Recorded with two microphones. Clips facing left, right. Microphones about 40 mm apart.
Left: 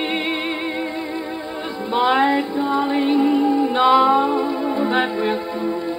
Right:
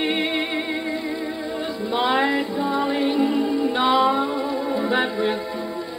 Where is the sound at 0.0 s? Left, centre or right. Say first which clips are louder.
Even; left.